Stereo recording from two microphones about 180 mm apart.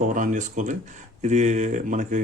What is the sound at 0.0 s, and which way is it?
Speech, 45° right (ahead or behind).